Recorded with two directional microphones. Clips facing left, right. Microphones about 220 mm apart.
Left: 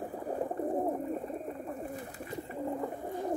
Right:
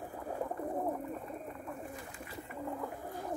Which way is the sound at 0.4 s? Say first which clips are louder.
Left 4 dB; 25° left (ahead or behind).